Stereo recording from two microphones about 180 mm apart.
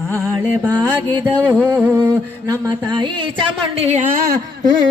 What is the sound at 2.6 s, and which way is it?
A man's voice, 25° right (ahead or behind).